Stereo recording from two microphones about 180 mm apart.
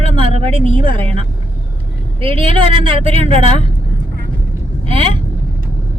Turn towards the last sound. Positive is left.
turn(degrees=-30)  # may be behind; listen again after turning